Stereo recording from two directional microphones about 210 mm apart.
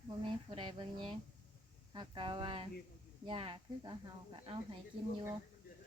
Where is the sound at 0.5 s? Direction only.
25° right (ahead or behind).